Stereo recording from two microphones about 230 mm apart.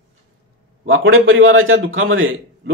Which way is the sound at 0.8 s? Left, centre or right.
Right.